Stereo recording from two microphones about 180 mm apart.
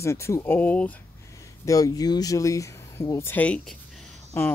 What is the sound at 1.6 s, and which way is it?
Speech, 20° left (ahead or behind).